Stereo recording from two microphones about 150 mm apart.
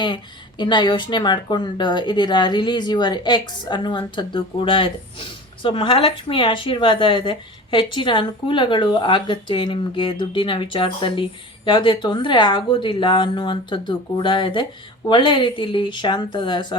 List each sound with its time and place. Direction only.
0.6 s speech: 30° left (ahead or behind)